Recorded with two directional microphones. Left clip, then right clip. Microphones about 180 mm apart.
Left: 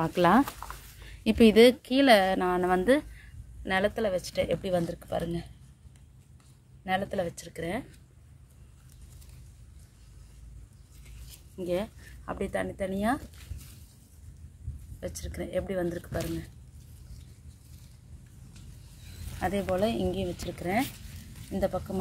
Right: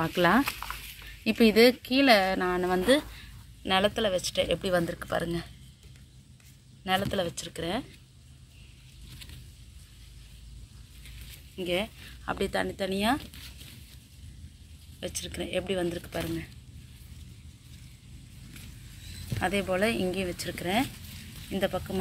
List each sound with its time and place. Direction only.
0.0 s a woman's voice: centre (ahead or behind)
6.8 s a woman's voice: 5° right (ahead or behind)
11.5 s a woman's voice: 5° left (ahead or behind)
15.0 s a woman's voice: centre (ahead or behind)
19.4 s a woman's voice: centre (ahead or behind)
21.6 s speech: 15° right (ahead or behind)